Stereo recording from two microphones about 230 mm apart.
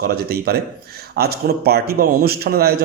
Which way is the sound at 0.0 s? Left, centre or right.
Right.